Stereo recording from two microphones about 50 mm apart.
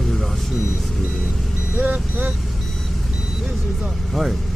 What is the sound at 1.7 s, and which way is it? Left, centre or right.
Speech, right.